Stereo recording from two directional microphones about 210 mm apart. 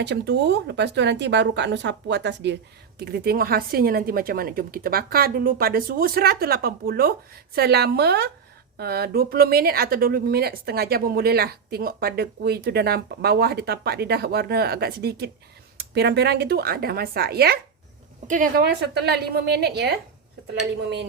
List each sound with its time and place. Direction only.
0.0 s a woman's voice: 55° right (ahead or behind)